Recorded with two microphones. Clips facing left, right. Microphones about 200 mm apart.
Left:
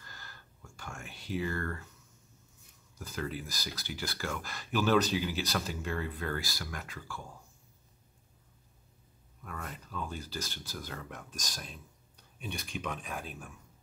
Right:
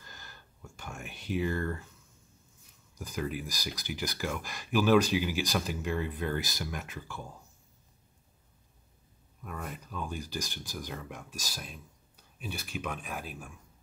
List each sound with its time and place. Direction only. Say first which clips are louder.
0.0 s a sound: right 1 dB; 20° right (ahead or behind)
3.0 s speech: right 3 dB; 15° right (ahead or behind)
9.4 s speech: right 3 dB; 15° right (ahead or behind)